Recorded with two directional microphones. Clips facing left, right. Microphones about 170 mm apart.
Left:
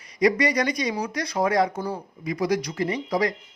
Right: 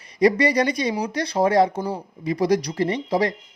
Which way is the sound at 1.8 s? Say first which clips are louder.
Right 3 dB; 15° right (ahead or behind).